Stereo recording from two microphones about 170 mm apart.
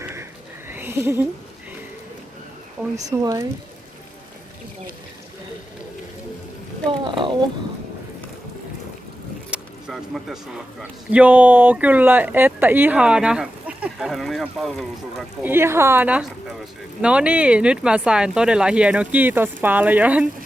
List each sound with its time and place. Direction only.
0.0 s a sound: 15° right (ahead or behind)
2.9 s speech: 20° right (ahead or behind)
7.0 s speech: 30° right (ahead or behind)
9.5 s a man's voice: centre (ahead or behind)
15.4 s a man's voice: 15° right (ahead or behind)